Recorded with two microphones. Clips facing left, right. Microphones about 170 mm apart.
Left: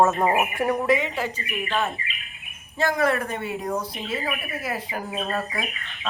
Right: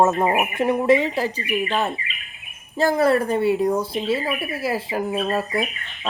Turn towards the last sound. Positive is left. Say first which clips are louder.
# right 4 dB
turn(degrees=-25)  # may be behind; listen again after turning